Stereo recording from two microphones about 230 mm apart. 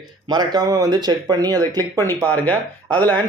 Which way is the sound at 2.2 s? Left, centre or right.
Centre.